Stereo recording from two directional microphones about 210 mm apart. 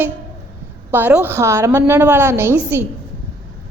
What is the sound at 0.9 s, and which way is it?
A woman's voice, 10° right (ahead or behind).